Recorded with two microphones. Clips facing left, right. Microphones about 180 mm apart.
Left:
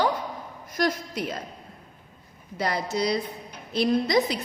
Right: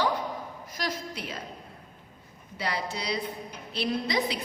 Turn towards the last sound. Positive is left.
turn(degrees=45)  # may be behind; listen again after turning